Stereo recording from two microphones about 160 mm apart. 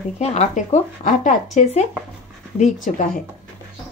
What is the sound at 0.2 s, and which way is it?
Speech, 45° left (ahead or behind).